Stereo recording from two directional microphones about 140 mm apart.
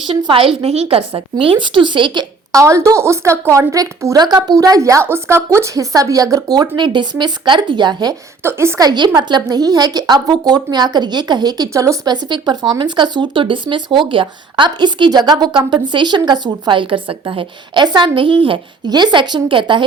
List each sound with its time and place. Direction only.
0.1 s a woman's voice: 40° right (ahead or behind)
8.4 s a woman's voice: 20° right (ahead or behind); by 19.8 s 35° right (ahead or behind)